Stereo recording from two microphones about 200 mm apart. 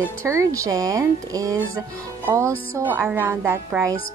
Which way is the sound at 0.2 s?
15° right (ahead or behind).